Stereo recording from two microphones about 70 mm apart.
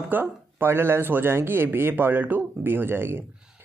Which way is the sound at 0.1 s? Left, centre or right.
Right.